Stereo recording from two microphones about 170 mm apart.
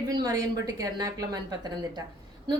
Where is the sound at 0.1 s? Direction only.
20° right (ahead or behind).